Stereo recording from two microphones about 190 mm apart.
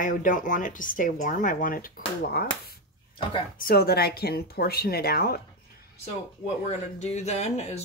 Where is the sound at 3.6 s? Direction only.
55° left (ahead or behind).